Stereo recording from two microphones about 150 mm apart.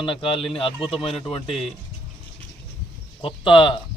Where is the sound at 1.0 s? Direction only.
40° left (ahead or behind).